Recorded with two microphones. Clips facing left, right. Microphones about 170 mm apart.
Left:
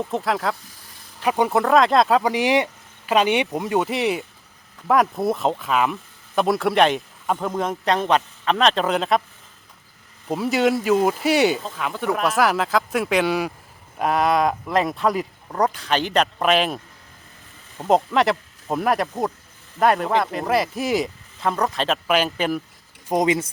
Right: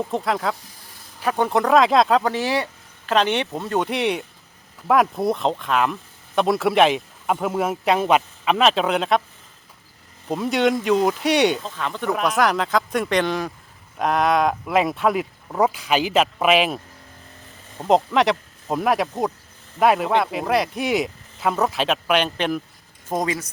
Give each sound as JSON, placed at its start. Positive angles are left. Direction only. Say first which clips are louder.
{"t": 0.0, "sound": "speech", "louder": "even", "side_deg": 0}
{"t": 1.2, "sound": "speech", "louder": "left 1 dB", "side_deg": 10}
{"t": 1.5, "sound": "speech", "louder": "right 1 dB", "side_deg": 0}
{"t": 10.2, "sound": "speech", "louder": "even", "side_deg": 5}
{"t": 23.0, "sound": "speech", "louder": "left 4 dB", "side_deg": 20}